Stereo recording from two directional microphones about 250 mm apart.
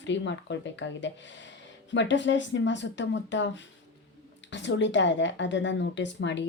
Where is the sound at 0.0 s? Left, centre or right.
Left.